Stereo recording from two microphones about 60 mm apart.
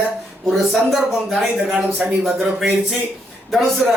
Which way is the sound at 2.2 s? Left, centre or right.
Centre.